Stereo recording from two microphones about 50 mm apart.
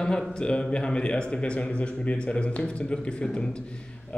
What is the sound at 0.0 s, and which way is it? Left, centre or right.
Speech, centre.